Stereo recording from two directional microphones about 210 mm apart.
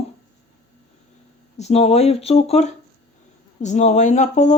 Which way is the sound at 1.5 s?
30° left (ahead or behind).